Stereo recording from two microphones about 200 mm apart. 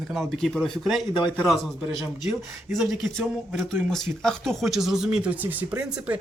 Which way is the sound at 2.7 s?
Centre (ahead or behind).